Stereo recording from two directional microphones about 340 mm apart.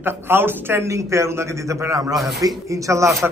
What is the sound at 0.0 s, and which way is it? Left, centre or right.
A man's voice, centre.